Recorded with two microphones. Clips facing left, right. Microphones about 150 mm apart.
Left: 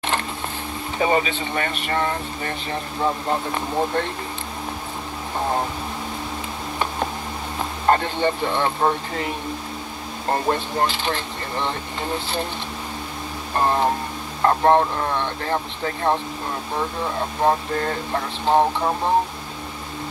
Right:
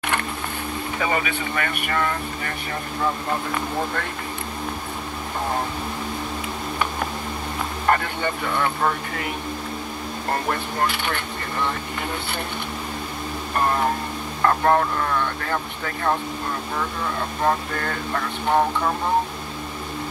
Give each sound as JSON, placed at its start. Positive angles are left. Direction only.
{"t": 0.9, "sound": "speech", "side_deg": 25}
{"t": 7.8, "sound": "speech", "side_deg": 30}
{"t": 10.3, "sound": "speech", "side_deg": 25}
{"t": 13.6, "sound": "speech", "side_deg": 25}